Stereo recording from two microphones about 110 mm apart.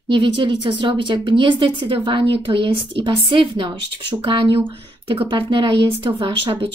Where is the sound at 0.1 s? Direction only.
45° right (ahead or behind).